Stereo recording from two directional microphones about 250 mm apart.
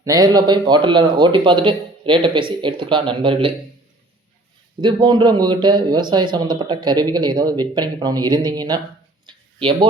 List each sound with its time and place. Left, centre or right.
0.0 s a man's voice: centre
4.8 s speech: centre
9.2 s a sound: centre